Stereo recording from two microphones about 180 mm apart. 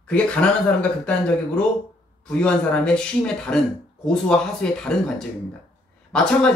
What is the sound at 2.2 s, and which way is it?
Speech, 5° left (ahead or behind).